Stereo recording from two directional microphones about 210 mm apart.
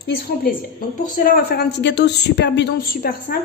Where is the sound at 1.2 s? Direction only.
45° left (ahead or behind).